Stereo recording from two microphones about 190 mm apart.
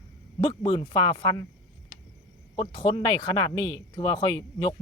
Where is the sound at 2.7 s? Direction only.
25° left (ahead or behind).